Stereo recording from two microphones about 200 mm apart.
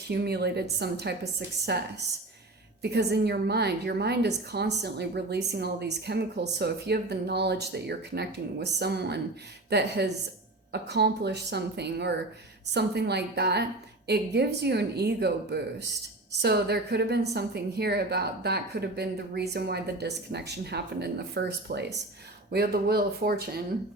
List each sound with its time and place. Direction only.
0.1 s a woman's voice: 55° right (ahead or behind)
2.9 s a woman's voice: 55° right (ahead or behind)